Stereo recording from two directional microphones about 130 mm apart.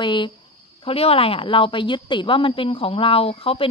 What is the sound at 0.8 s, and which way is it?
A woman's voice, 50° left (ahead or behind).